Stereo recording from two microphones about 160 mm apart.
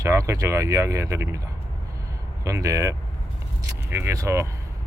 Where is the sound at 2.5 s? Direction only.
20° right (ahead or behind).